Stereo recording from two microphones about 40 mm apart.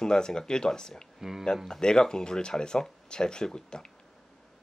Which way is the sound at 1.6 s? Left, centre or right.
Centre.